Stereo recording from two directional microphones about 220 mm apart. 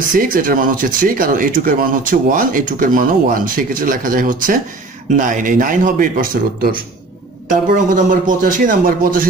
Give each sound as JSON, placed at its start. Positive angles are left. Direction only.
{"t": 0.1, "sound": "speech", "side_deg": -40}